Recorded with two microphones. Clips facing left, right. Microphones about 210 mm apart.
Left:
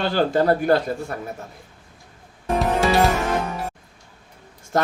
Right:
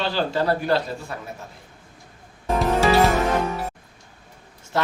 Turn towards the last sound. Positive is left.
turn(degrees=45)  # may be behind; listen again after turning